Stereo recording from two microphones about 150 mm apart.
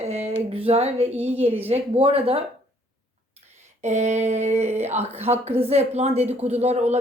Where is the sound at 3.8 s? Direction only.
50° right (ahead or behind).